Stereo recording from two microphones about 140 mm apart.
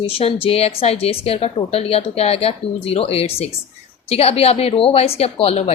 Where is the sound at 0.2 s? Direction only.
45° left (ahead or behind).